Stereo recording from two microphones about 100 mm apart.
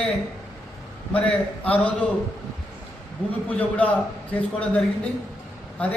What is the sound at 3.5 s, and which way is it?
A man's voice, 15° left (ahead or behind).